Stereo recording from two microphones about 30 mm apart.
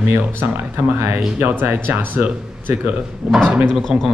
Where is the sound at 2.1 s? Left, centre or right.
Right.